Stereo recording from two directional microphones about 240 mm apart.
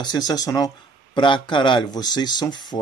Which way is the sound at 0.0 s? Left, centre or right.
Centre.